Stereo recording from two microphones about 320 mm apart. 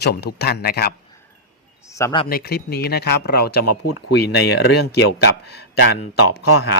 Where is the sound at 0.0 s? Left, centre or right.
Left.